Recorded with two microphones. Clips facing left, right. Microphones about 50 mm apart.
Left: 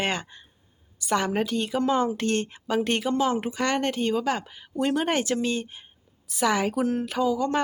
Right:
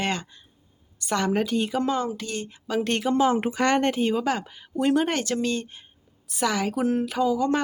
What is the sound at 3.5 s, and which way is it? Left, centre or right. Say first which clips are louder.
Speech: right 3 dB; centre.